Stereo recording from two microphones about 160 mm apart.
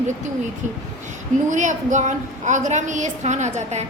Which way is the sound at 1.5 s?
50° right (ahead or behind).